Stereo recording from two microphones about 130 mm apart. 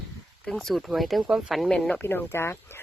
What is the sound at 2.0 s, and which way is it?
Speech, 20° left (ahead or behind).